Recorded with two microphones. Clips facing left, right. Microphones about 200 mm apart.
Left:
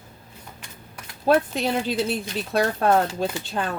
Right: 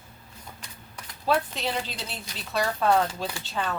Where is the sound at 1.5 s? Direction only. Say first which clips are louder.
Left 8 dB; 55° left (ahead or behind).